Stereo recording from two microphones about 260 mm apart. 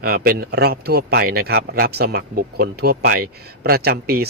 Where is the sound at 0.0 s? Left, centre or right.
Right.